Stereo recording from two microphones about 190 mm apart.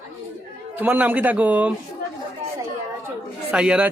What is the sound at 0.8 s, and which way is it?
Speech, 10° right (ahead or behind).